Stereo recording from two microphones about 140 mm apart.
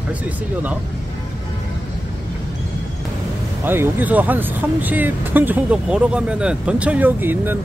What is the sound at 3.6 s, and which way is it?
Speech, 15° right (ahead or behind).